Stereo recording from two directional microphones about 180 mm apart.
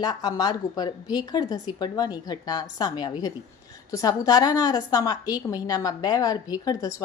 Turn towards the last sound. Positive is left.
turn(degrees=20)  # may be behind; listen again after turning